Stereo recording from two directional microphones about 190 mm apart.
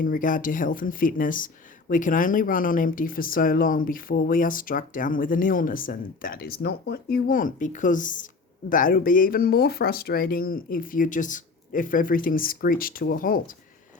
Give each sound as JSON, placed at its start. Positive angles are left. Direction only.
{"t": 0.0, "sound": "speech", "side_deg": 45}